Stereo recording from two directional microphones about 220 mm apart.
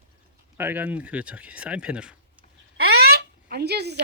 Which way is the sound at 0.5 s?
10° right (ahead or behind).